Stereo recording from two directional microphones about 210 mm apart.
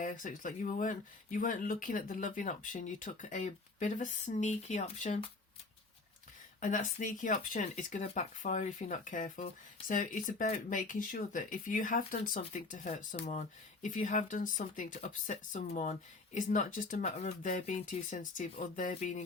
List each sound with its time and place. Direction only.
0.0 s speech: 40° left (ahead or behind)
6.6 s speech: 35° left (ahead or behind)